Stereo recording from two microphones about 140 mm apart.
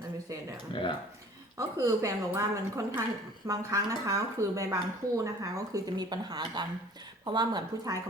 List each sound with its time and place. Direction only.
0.7 s speech: 35° left (ahead or behind)
1.5 s speech: 20° right (ahead or behind)